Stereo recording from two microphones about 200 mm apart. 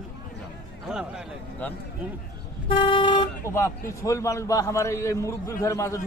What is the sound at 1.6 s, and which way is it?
Speech, 10° left (ahead or behind).